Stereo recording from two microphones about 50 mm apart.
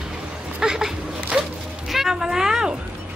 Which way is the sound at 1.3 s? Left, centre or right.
Right.